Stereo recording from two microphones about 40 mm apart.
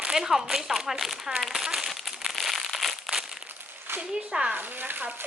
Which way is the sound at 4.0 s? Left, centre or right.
Right.